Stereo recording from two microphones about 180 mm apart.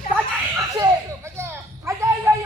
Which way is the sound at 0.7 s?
20° right (ahead or behind).